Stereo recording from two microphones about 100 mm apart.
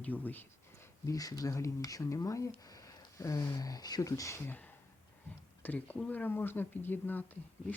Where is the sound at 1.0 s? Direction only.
35° left (ahead or behind).